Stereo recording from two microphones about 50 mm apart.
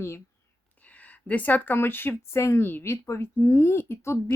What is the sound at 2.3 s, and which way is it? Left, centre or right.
Speech, left.